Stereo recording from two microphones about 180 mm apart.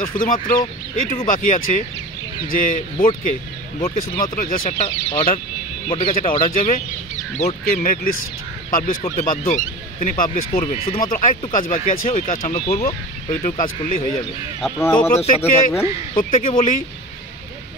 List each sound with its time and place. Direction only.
0.2 s speech: 50° left (ahead or behind)
3.8 s speech: 35° left (ahead or behind)
4.2 s speech: 50° left (ahead or behind)
4.7 s speech: 35° left (ahead or behind)
6.5 s speech: 45° left (ahead or behind)
10.6 s speech: 30° left (ahead or behind)
11.0 s speech: 50° left (ahead or behind)
13.6 s speech: 45° left (ahead or behind)
14.8 s speech: 10° left (ahead or behind)
15.1 s speech: 40° left (ahead or behind)